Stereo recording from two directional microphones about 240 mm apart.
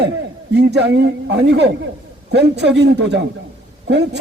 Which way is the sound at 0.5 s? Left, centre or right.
Right.